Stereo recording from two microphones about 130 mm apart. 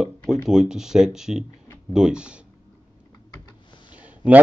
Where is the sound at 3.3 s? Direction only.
35° left (ahead or behind).